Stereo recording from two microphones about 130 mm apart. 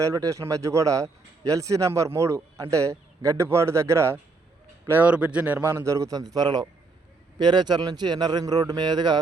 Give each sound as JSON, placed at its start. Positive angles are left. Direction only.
{"t": 0.0, "sound": "speech", "side_deg": -25}